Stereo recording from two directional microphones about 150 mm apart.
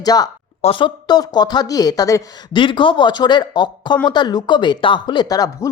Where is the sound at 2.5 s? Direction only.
35° left (ahead or behind).